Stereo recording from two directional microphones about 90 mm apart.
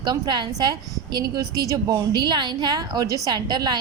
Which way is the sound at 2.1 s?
60° right (ahead or behind).